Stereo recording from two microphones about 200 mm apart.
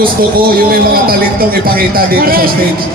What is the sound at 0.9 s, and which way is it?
A man's voice, 45° right (ahead or behind).